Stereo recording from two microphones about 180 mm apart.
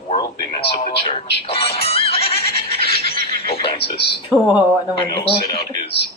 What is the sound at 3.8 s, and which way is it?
Speech, 65° left (ahead or behind).